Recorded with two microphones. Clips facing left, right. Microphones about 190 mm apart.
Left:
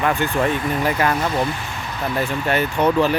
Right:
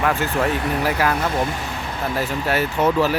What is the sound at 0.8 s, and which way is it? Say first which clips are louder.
Speech: left 1 dB; 5° right (ahead or behind).